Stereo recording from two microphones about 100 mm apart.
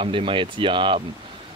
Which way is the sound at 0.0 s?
60° right (ahead or behind).